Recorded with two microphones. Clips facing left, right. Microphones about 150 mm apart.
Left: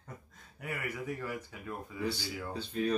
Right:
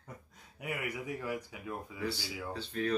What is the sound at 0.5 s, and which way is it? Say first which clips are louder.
Speech: right 1 dB; 15° right (ahead or behind).